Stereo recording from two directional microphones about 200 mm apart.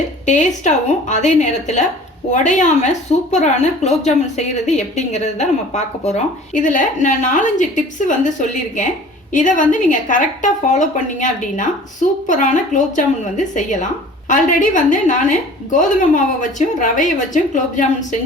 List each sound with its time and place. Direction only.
0.3 s a woman's voice: 35° left (ahead or behind)